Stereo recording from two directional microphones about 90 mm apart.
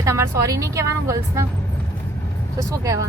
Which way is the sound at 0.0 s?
35° right (ahead or behind).